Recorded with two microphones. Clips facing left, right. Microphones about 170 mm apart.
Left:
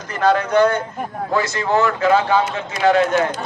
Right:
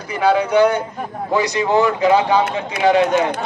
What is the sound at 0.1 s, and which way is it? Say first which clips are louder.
A man's voice: right 1 dB; 10° right (ahead or behind).